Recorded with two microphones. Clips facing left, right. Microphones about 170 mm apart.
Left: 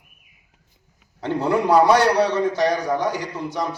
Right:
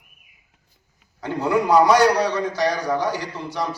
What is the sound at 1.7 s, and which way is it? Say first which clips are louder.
A man's voice: even; 25° left (ahead or behind).